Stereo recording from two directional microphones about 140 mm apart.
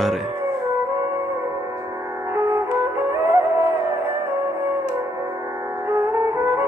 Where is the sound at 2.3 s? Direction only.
20° right (ahead or behind).